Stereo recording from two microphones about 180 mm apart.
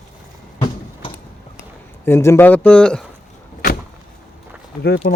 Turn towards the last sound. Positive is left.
turn(degrees=60)  # may be behind; listen again after turning